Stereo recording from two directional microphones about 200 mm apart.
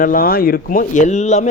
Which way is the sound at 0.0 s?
45° left (ahead or behind).